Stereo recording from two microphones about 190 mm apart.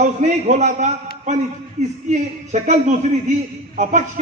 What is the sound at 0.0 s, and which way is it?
A man's voice, 40° right (ahead or behind).